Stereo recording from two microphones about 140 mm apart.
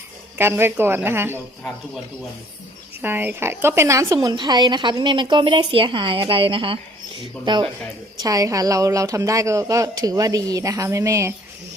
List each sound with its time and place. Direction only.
0.3 s a woman's voice: 15° right (ahead or behind)
3.0 s a woman's voice: 15° right (ahead or behind); by 7.7 s 35° right (ahead or behind)
8.2 s speech: 25° right (ahead or behind)